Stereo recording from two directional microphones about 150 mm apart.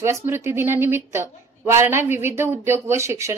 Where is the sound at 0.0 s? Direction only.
15° right (ahead or behind).